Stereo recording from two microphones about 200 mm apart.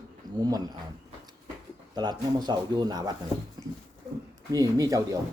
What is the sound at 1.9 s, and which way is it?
Speech, 20° right (ahead or behind).